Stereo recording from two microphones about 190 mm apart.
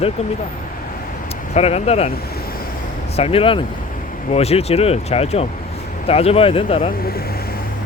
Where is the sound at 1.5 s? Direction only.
35° left (ahead or behind).